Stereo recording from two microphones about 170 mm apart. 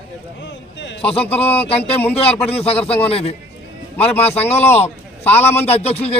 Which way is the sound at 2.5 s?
35° left (ahead or behind).